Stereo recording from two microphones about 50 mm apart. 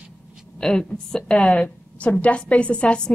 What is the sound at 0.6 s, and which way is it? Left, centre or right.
A woman's voice, centre.